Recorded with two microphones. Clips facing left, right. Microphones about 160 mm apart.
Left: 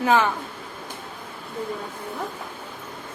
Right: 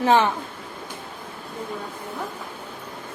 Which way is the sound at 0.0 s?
25° right (ahead or behind).